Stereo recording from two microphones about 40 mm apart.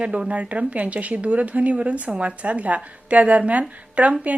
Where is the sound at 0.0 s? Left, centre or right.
Right.